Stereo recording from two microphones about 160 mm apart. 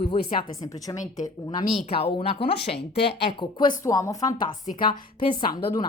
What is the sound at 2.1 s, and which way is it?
Speech, 35° left (ahead or behind).